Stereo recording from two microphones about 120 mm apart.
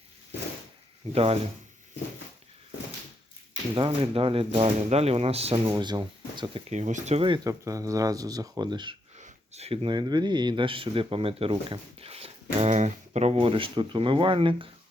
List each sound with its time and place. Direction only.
1.1 s speech: 55° right (ahead or behind)
3.8 s speech: 50° right (ahead or behind)
5.6 s speech: 35° right (ahead or behind)
6.7 s speech: 85° right
7.2 s speech: 45° right (ahead or behind)
7.4 s speech: 30° right (ahead or behind)
9.1 s a sound: 70° right (ahead or behind)
9.8 s speech: 40° right (ahead or behind)